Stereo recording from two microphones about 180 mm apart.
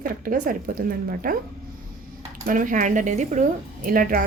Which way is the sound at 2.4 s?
50° right (ahead or behind).